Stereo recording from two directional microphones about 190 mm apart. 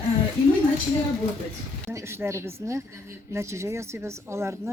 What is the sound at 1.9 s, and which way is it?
Speech, 15° right (ahead or behind).